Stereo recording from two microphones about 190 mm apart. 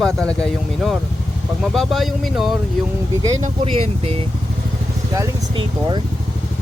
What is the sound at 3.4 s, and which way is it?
Speech, 30° right (ahead or behind).